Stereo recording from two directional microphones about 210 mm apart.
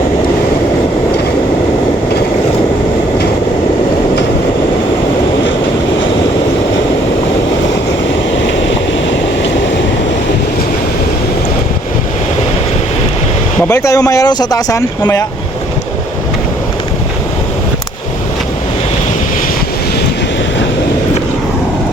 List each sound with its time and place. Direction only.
13.7 s speech: 15° left (ahead or behind)